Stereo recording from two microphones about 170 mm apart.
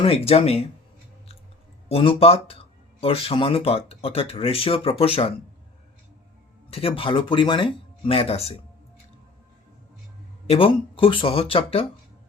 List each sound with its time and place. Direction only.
0.0 s speech: 35° left (ahead or behind)
1.9 s speech: 35° left (ahead or behind)
6.7 s speech: 35° left (ahead or behind)
10.4 s speech: 35° left (ahead or behind)